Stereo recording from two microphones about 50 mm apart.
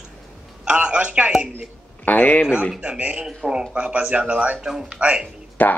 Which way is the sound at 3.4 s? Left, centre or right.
Centre.